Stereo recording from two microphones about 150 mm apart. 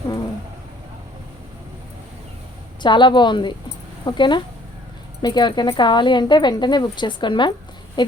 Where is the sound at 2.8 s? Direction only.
30° left (ahead or behind).